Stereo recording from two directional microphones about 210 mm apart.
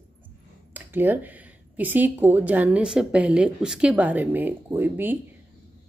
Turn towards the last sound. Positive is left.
turn(degrees=-10)  # may be behind; listen again after turning